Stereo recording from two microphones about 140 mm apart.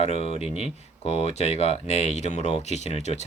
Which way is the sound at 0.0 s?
50° left (ahead or behind).